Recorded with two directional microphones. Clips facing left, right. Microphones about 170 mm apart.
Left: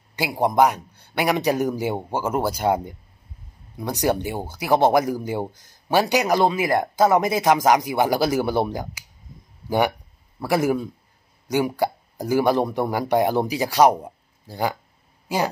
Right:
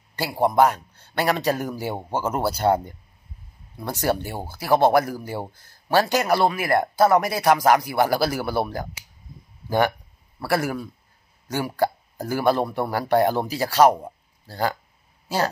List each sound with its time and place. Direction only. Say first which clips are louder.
0.1 s speech: even; 15° left (ahead or behind)